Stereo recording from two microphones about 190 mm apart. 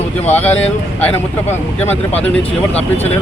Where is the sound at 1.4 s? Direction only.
35° left (ahead or behind).